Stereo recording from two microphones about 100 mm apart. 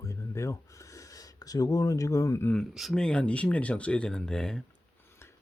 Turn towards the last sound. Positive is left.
turn(degrees=5)  # may be behind; listen again after turning